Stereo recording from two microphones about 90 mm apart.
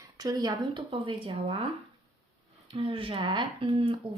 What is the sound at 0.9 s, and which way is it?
Speech, 80° right.